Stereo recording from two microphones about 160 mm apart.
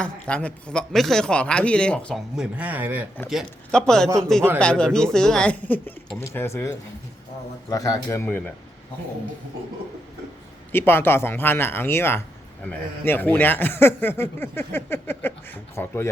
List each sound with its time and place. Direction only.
0.0 s speech: 5° left (ahead or behind); by 3.1 s 10° right (ahead or behind)
3.2 s a man's voice: centre (ahead or behind)
10.7 s a man's voice: 15° left (ahead or behind)